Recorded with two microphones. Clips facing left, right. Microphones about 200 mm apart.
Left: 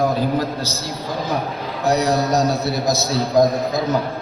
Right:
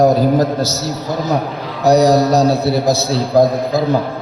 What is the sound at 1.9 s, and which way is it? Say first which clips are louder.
A man's voice: right 7 dB; 40° right (ahead or behind).